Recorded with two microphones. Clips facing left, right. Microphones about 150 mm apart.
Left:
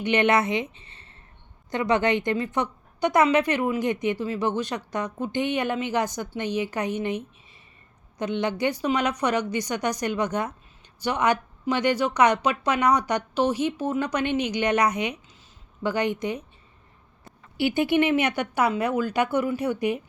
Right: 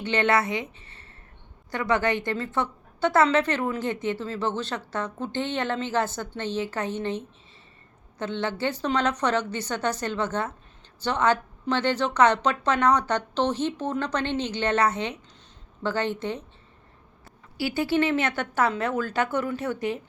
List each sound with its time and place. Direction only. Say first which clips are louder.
0.0 s a woman's voice: left 2 dB; 15° left (ahead or behind)